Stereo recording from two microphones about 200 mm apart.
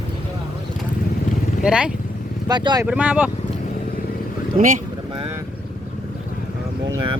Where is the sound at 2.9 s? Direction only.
5° right (ahead or behind).